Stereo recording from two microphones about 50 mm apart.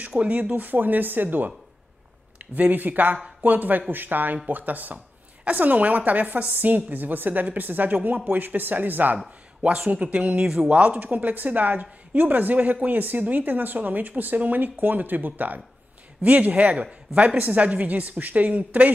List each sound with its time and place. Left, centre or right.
0.2 s speech: right
2.5 s speech: right
9.6 s speech: right
10.3 s speech: centre
10.7 s speech: right